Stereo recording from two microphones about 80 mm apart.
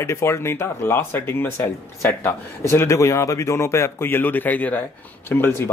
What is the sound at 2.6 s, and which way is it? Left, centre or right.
Speech, left.